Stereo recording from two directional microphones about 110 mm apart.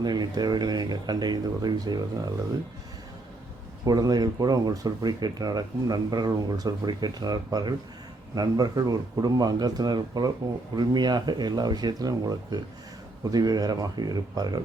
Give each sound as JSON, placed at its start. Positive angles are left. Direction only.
{"t": 0.0, "sound": "speech", "side_deg": -40}
{"t": 3.8, "sound": "speech", "side_deg": -35}